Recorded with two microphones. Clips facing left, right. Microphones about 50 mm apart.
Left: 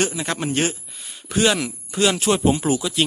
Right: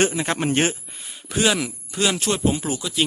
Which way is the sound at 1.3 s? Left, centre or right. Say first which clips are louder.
Left 2 dB; centre.